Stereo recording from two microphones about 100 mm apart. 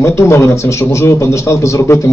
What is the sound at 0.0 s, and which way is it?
Speech, 30° left (ahead or behind).